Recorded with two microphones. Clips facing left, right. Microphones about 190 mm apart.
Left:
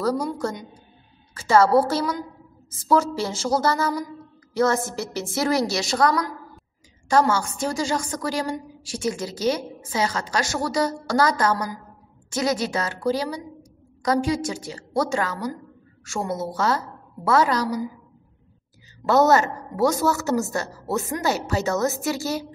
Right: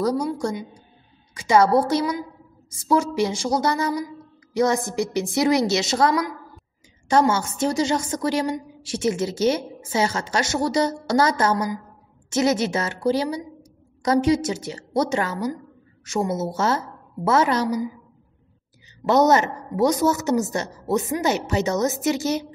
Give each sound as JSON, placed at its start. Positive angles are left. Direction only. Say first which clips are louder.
{"t": 0.0, "sound": "a woman's voice", "louder": "right 1 dB", "side_deg": -15}
{"t": 19.0, "sound": "a woman's voice", "louder": "even", "side_deg": -20}